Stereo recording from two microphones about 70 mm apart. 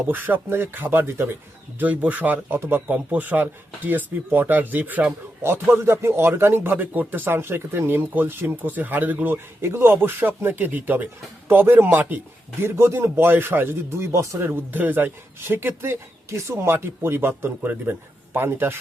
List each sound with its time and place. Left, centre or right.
0.1 s speech: right
1.8 s speech: right
2.8 s speech: right
5.4 s speech: right
12.6 s speech: right
14.3 s speech: right